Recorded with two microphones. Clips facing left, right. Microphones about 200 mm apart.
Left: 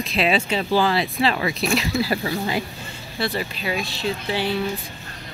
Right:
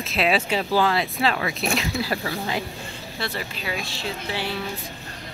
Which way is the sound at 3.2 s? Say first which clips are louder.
Left 5 dB; 15° left (ahead or behind).